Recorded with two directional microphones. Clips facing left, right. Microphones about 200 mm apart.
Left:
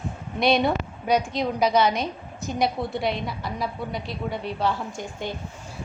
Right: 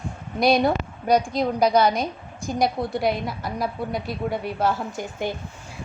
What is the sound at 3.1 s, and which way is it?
Speech, 45° right (ahead or behind).